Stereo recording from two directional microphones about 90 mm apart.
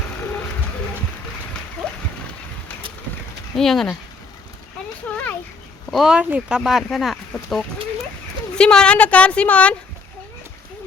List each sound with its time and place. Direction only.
3.5 s speech: 5° left (ahead or behind)
5.0 s a sound: 15° left (ahead or behind)
5.9 s speech: centre (ahead or behind)
6.1 s speech: 15° right (ahead or behind)
6.6 s speech: centre (ahead or behind)